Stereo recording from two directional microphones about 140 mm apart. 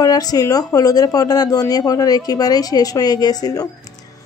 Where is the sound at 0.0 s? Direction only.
25° left (ahead or behind).